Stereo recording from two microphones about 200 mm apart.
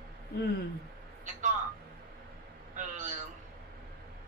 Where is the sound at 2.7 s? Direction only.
40° right (ahead or behind).